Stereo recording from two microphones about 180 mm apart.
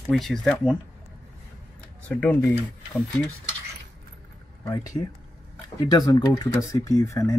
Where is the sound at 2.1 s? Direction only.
10° left (ahead or behind).